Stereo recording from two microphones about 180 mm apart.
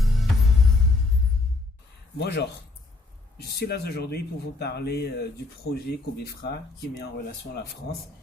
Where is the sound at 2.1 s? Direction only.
65° left (ahead or behind).